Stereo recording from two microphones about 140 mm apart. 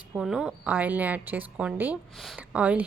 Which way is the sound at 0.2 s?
5° right (ahead or behind).